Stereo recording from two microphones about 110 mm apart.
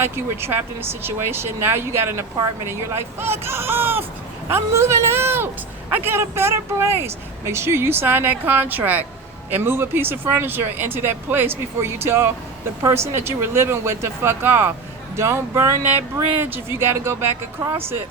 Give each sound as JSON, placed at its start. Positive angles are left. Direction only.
{"t": 0.0, "sound": "speech", "side_deg": -20}